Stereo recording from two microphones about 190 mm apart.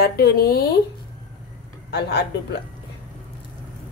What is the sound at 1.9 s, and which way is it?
Speech, 60° left (ahead or behind).